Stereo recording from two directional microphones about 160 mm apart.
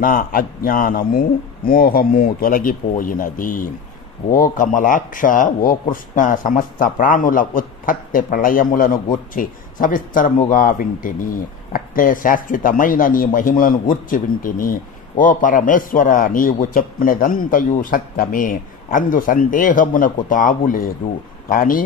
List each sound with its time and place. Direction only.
0.0 s speech: 60° left (ahead or behind)